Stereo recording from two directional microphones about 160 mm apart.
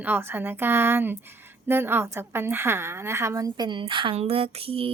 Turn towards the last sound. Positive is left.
turn(degrees=-35)  # may be behind; listen again after turning